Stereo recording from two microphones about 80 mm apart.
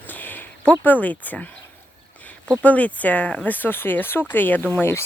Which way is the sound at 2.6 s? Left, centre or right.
Centre.